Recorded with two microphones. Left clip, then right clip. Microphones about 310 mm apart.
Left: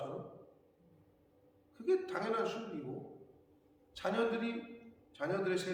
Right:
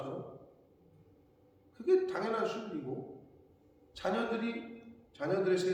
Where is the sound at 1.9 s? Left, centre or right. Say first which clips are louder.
Right 4 dB; centre.